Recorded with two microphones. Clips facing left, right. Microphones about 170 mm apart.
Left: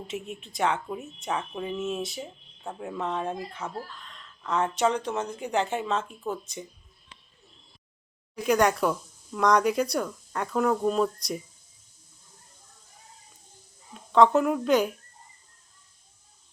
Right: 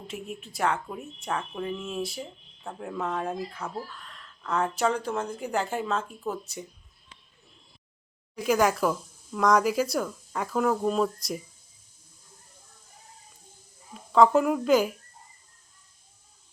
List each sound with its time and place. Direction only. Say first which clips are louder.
0.1 s speech: right 1 dB; centre (ahead or behind)
8.4 s speech: left 1 dB; 5° right (ahead or behind)
13.9 s a woman's voice: even; centre (ahead or behind)